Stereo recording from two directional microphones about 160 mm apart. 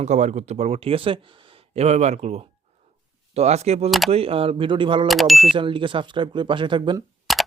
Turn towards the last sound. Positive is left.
turn(degrees=0)  # may be behind; listen again after turning